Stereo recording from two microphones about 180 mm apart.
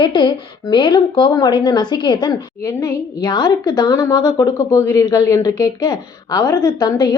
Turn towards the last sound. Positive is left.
turn(degrees=20)  # may be behind; listen again after turning